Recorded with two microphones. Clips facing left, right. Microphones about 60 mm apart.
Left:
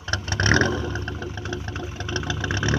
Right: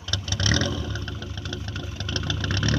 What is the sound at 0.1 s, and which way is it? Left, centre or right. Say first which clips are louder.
Vehicle: left 6 dB; left.